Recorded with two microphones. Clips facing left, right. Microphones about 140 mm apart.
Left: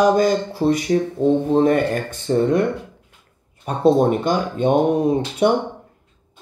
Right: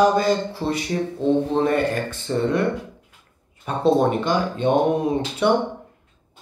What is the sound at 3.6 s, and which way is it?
Speech, 45° left (ahead or behind).